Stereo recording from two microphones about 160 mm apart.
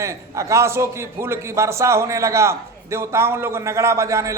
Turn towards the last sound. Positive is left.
turn(degrees=-20)  # may be behind; listen again after turning